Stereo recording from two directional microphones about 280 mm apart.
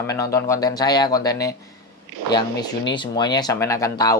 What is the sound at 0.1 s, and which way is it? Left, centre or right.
Speech, centre.